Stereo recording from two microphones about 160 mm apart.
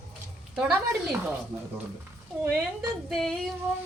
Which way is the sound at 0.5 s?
5° right (ahead or behind).